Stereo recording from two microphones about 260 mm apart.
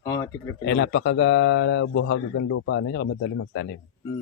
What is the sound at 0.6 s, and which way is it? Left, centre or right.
Speech, left.